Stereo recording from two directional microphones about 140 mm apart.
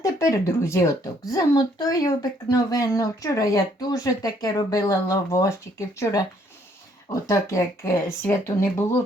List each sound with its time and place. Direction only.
0.0 s speech: 20° left (ahead or behind)